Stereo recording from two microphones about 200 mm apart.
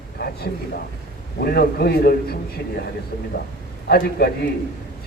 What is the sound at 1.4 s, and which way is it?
Speech, 50° left (ahead or behind).